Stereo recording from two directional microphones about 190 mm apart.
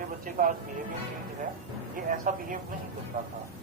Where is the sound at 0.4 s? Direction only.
45° right (ahead or behind).